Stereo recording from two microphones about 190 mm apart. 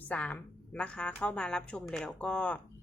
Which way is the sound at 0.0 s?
10° left (ahead or behind).